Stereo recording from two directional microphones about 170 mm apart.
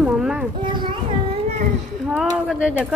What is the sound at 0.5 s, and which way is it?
Speech, 25° right (ahead or behind).